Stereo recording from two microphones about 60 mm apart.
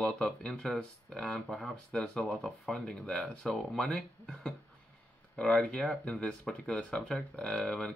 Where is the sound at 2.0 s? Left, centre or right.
Centre.